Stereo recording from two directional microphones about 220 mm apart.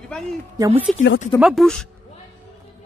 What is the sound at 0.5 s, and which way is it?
Speech, 15° right (ahead or behind).